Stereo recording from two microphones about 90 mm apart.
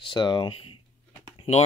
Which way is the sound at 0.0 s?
60° left (ahead or behind).